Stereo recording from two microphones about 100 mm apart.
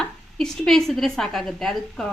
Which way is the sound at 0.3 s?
5° left (ahead or behind).